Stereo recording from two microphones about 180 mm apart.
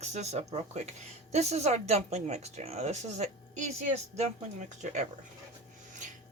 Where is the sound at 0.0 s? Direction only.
40° right (ahead or behind).